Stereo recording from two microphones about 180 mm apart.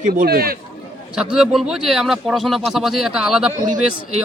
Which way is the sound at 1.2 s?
5° right (ahead or behind).